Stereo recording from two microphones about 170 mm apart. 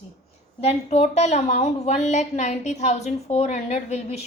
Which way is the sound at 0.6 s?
35° left (ahead or behind).